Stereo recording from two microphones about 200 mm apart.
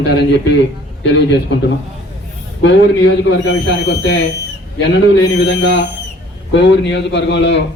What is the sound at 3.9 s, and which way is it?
Speech, 55° left (ahead or behind).